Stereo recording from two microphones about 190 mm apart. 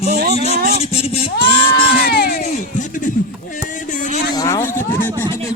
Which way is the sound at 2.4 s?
40° left (ahead or behind).